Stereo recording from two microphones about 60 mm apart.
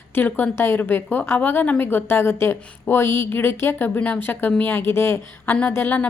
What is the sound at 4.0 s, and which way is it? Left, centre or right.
Speech, left.